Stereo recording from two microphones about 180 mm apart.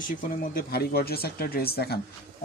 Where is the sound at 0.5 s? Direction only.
60° left (ahead or behind).